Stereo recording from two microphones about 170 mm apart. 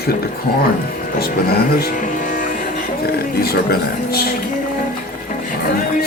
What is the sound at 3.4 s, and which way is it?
Speech, 65° left (ahead or behind).